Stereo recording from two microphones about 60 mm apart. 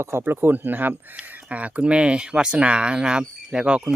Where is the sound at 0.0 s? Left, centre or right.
Right.